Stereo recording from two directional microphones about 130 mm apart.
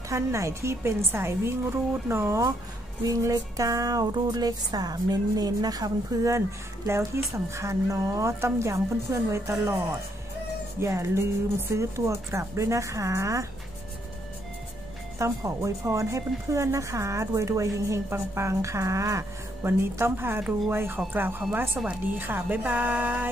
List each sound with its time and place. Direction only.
0.1 s speech: 25° right (ahead or behind)
10.8 s speech: 20° right (ahead or behind)
15.1 s speech: 25° right (ahead or behind)